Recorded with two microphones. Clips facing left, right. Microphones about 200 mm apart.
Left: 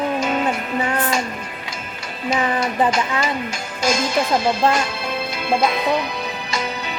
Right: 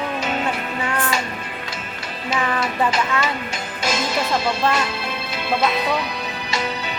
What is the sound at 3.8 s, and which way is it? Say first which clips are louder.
Music: left 4 dB; 45° left (ahead or behind).